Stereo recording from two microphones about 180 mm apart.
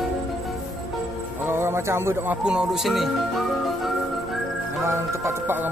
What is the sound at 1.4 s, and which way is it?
Speech, 15° right (ahead or behind).